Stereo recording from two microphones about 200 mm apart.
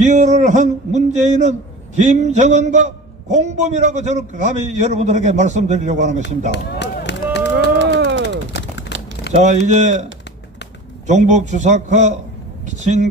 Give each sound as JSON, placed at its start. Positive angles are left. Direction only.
{"t": 0.0, "sound": "a man's voice", "side_deg": -35}
{"t": 6.5, "sound": "speech", "side_deg": 60}
{"t": 7.8, "sound": "a sound", "side_deg": -60}
{"t": 9.3, "sound": "a man's voice", "side_deg": -35}
{"t": 11.1, "sound": "a man's voice", "side_deg": -35}